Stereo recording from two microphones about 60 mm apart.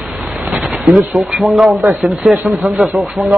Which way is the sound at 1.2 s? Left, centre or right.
Centre.